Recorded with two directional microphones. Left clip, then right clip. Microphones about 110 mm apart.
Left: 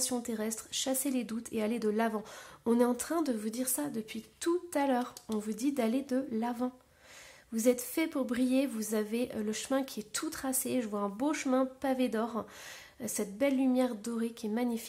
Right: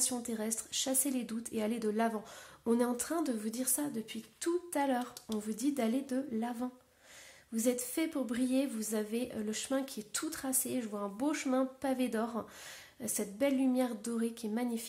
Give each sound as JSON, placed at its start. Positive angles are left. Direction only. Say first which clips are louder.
{"t": 0.0, "sound": "a woman's voice", "louder": "left 2 dB", "side_deg": 25}